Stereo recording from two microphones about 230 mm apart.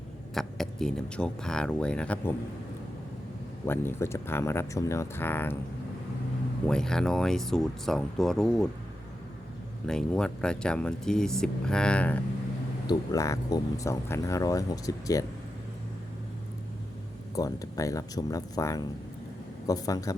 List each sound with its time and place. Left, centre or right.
0.3 s speech: centre
3.7 s speech: centre
6.7 s speech: centre
9.8 s speech: centre
17.3 s speech: centre